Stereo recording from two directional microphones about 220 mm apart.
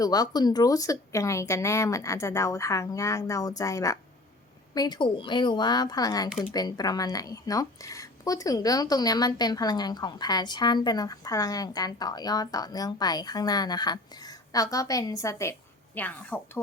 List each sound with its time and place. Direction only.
0.0 s a woman's voice: 15° left (ahead or behind)